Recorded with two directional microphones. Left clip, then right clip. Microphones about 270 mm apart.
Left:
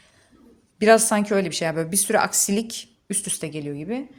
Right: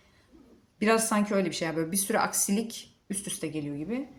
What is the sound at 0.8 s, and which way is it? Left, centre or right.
A woman's voice, left.